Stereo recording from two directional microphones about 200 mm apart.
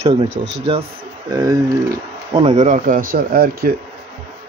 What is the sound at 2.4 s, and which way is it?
Speech, 35° right (ahead or behind).